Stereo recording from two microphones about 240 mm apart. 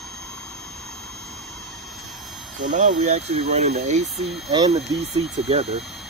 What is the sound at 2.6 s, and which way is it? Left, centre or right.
Speech, right.